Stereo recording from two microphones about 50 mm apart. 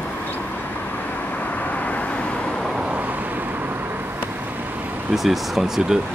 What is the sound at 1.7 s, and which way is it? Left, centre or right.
Vehicle, left.